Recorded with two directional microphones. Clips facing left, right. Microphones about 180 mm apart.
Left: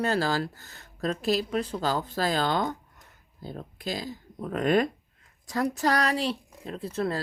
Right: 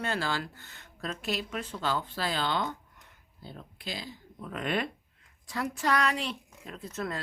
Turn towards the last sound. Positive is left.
turn(degrees=30)  # may be behind; listen again after turning